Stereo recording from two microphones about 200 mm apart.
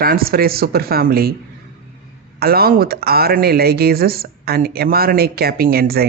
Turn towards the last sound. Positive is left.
turn(degrees=-50)  # may be behind; listen again after turning